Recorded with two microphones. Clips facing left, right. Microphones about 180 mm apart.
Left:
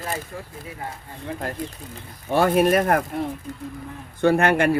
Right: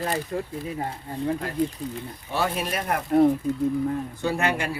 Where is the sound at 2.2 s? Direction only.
50° left (ahead or behind).